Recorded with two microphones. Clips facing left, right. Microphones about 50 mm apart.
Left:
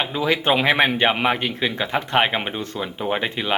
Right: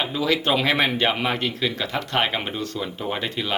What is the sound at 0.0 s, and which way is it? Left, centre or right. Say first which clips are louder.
Speech: left 2 dB; left.